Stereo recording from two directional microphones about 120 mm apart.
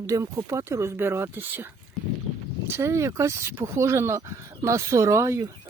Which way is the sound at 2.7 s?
25° right (ahead or behind).